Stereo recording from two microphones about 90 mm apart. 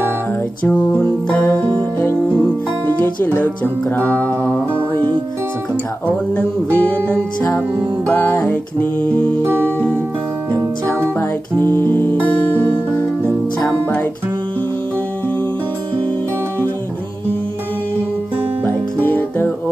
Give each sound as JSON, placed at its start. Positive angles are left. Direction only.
{"t": 0.7, "sound": "music", "side_deg": 15}
{"t": 2.9, "sound": "music", "side_deg": 20}
{"t": 11.7, "sound": "music", "side_deg": 25}
{"t": 18.6, "sound": "music", "side_deg": 20}